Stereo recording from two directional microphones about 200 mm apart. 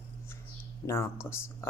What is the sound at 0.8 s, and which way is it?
Speech, 15° left (ahead or behind).